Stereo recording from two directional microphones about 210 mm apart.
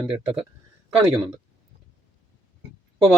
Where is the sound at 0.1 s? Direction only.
25° right (ahead or behind).